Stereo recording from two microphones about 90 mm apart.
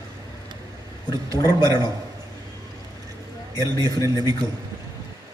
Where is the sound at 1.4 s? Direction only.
45° left (ahead or behind).